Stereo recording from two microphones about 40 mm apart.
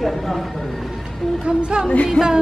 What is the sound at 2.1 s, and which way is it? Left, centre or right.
Music, centre.